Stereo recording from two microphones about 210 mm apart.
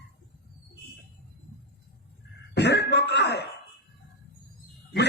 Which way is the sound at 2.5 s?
55° left (ahead or behind).